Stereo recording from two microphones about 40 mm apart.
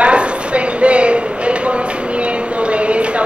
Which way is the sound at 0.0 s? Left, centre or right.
Right.